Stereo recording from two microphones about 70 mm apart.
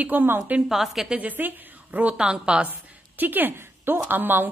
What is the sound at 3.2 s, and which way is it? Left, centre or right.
A woman's voice, right.